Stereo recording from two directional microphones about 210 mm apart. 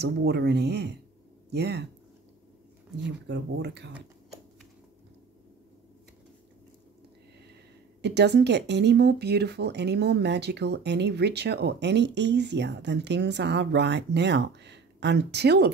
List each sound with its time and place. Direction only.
0.0 s speech: 50° right (ahead or behind)
3.0 s speech: 55° right (ahead or behind)
8.0 s speech: 55° right (ahead or behind)